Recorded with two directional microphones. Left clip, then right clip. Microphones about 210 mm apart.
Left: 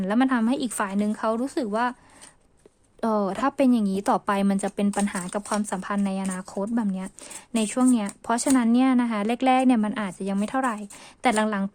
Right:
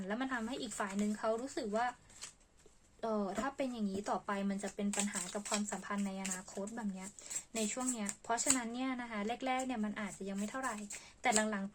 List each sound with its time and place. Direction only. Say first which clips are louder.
0.1 s a woman's voice: left 16 dB; 45° left (ahead or behind)
3.0 s a woman's voice: left 13 dB; 55° left (ahead or behind)